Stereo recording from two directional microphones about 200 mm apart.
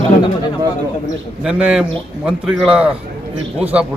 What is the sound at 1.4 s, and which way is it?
A man's voice, 5° right (ahead or behind).